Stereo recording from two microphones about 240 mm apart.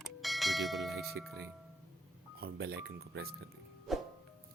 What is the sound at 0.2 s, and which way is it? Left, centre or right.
Speech, centre.